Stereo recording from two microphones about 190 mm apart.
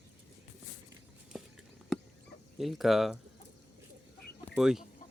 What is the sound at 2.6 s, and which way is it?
Speech, centre (ahead or behind).